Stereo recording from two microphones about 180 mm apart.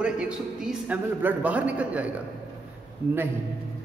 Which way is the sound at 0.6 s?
5° right (ahead or behind).